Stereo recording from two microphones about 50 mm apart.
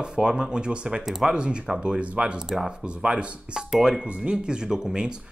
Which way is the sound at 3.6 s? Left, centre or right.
Centre.